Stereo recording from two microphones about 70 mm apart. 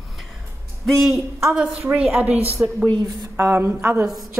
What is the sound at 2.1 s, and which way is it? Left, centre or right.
Speech, right.